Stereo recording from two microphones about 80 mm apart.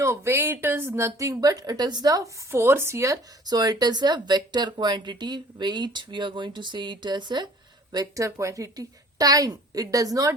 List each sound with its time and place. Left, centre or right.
0.0 s speech: right
3.4 s speech: right
7.9 s a woman's voice: right